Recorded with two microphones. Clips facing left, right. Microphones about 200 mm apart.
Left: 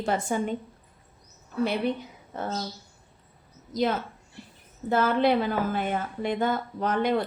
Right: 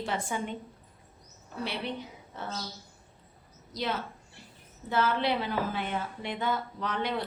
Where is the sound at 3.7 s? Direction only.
50° left (ahead or behind).